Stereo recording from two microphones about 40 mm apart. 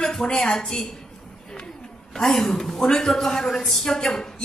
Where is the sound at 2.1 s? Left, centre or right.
Centre.